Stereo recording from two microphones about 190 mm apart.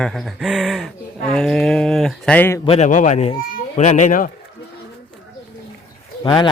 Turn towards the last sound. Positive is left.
turn(degrees=25)  # may be behind; listen again after turning